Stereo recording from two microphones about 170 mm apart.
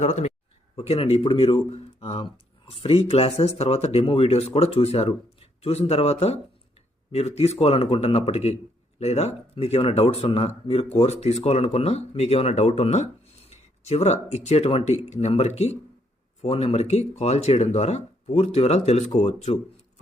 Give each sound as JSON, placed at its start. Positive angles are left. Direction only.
{"t": 0.0, "sound": "speech", "side_deg": 45}